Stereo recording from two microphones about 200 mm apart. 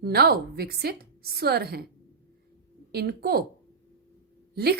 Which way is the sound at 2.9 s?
50° right (ahead or behind).